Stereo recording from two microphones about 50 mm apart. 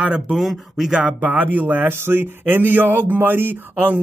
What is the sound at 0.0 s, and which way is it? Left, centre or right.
Speech, right.